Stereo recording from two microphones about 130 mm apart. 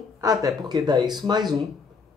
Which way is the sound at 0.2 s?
30° right (ahead or behind).